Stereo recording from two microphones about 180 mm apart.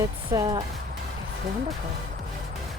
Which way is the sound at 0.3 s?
25° right (ahead or behind).